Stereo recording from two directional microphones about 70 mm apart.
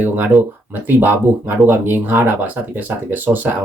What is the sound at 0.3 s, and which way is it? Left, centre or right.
Speech, centre.